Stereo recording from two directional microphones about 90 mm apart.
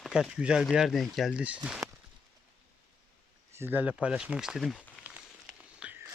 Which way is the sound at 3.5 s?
25° right (ahead or behind).